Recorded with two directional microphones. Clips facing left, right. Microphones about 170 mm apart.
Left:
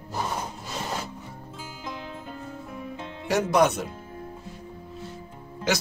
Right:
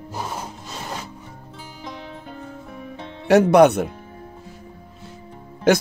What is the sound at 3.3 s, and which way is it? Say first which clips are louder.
Speech: right 9 dB; 60° right (ahead or behind).